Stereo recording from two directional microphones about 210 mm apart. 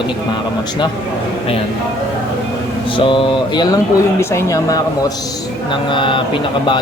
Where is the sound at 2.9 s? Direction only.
25° left (ahead or behind).